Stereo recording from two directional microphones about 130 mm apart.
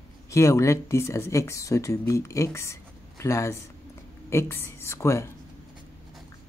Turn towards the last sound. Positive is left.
turn(degrees=20)  # may be behind; listen again after turning